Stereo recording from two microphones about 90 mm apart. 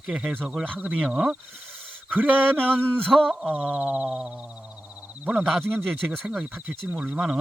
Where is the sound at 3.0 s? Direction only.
5° left (ahead or behind).